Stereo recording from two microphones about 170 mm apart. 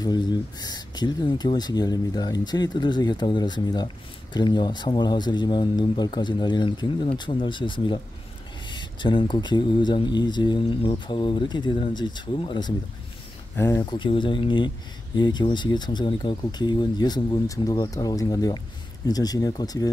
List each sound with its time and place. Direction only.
0.0 s speech: 25° left (ahead or behind)
13.6 s speech: 15° left (ahead or behind)
13.8 s speech: 30° left (ahead or behind)